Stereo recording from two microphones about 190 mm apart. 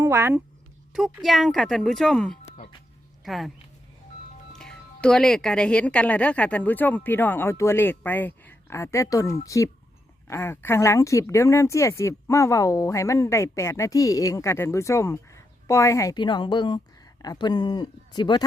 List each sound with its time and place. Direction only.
0.0 s speech: 15° right (ahead or behind)
0.9 s speech: centre (ahead or behind)
4.5 s speech: 5° left (ahead or behind); by 18.4 s 20° left (ahead or behind)